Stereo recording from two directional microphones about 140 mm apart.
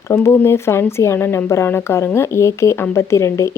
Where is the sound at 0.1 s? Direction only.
15° left (ahead or behind).